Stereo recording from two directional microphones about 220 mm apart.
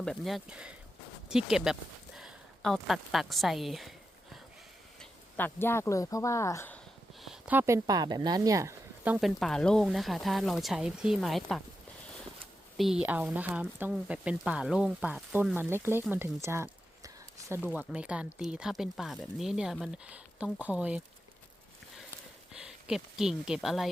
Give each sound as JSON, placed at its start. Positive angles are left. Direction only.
{"t": 0.0, "sound": "a woman's voice", "side_deg": 0}
{"t": 4.9, "sound": "speech", "side_deg": 10}
{"t": 7.2, "sound": "speech", "side_deg": -5}
{"t": 12.7, "sound": "speech", "side_deg": 0}
{"t": 22.5, "sound": "speech", "side_deg": -5}